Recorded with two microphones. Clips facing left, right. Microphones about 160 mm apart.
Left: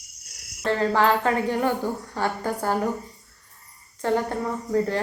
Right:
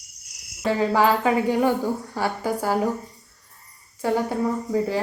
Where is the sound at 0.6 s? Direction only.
10° right (ahead or behind).